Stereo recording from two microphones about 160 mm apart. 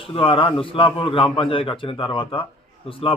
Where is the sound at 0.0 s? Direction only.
35° left (ahead or behind).